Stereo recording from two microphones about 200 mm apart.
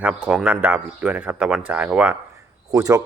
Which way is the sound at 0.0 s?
5° right (ahead or behind).